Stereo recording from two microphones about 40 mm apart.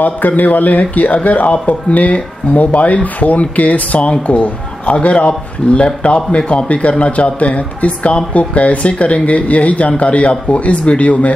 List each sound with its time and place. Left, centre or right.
0.0 s speech: left